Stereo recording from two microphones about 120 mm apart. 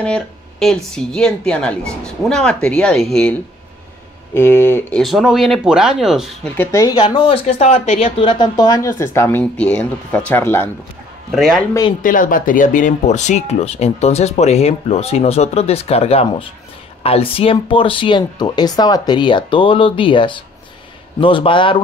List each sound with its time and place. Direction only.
0.0 s speech: 5° left (ahead or behind)
4.3 s speech: 15° left (ahead or behind)
4.9 s speech: centre (ahead or behind)
6.5 s speech: 15° left (ahead or behind)
6.8 s speech: 40° left (ahead or behind); by 9.4 s 20° left (ahead or behind)
9.4 s speech: 10° left (ahead or behind)
11.3 s speech: 5° left (ahead or behind)
12.0 s speech: 90° left; by 21.8 s 45° left (ahead or behind)